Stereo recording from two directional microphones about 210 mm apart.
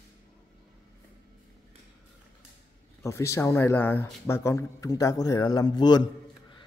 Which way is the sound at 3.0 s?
15° left (ahead or behind).